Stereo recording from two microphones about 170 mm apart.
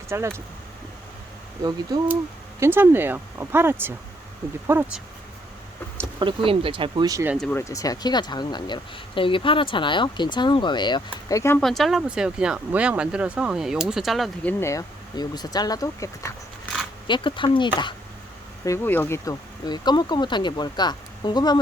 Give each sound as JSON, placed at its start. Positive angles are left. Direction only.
{"t": 0.1, "sound": "speech", "side_deg": -15}
{"t": 1.9, "sound": "speech", "side_deg": -20}
{"t": 6.1, "sound": "speech", "side_deg": -30}
{"t": 7.3, "sound": "speech", "side_deg": 5}
{"t": 7.6, "sound": "speech", "side_deg": 20}
{"t": 11.6, "sound": "speech", "side_deg": 0}
{"t": 14.6, "sound": "speech", "side_deg": 20}
{"t": 18.6, "sound": "speech", "side_deg": 15}